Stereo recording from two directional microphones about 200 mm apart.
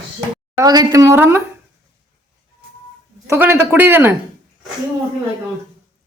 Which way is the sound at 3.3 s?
10° right (ahead or behind).